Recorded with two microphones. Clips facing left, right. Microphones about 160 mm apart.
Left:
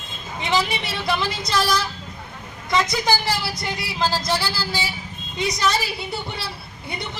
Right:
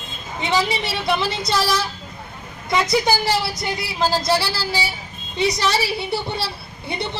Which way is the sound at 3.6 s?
Centre (ahead or behind).